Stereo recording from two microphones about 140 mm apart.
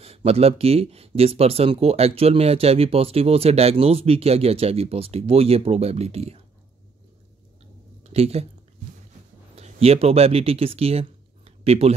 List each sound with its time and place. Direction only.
0.0 s speech: 45° right (ahead or behind)
8.0 s speech: 45° right (ahead or behind)
9.6 s speech: 45° right (ahead or behind)